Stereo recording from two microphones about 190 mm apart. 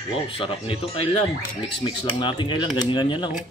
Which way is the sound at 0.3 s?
30° left (ahead or behind).